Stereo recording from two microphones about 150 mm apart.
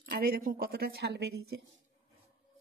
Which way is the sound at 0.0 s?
80° right.